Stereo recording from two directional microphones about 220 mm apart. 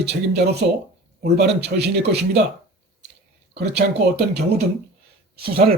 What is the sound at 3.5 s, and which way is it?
Speech, 50° right (ahead or behind).